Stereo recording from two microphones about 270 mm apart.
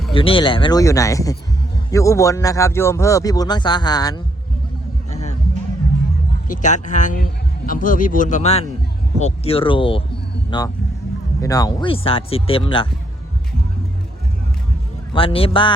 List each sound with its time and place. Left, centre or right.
0.1 s a man's voice: centre
5.1 s music: left
6.5 s a man's voice: left
15.1 s speech: centre